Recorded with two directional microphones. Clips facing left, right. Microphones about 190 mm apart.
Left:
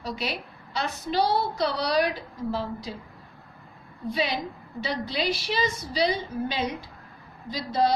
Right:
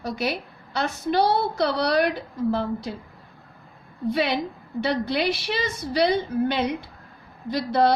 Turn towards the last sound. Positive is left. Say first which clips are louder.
# right 4 dB
turn(degrees=-60)  # may be behind; listen again after turning